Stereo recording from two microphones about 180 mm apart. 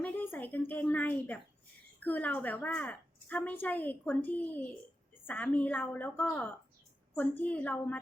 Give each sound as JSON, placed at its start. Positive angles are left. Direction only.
{"t": 0.0, "sound": "a woman's voice", "side_deg": 10}